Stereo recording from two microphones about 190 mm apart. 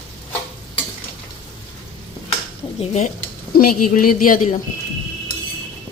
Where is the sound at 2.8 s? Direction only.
35° left (ahead or behind).